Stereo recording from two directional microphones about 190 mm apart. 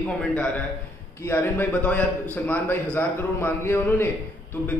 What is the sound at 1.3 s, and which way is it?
A man's voice, 10° left (ahead or behind).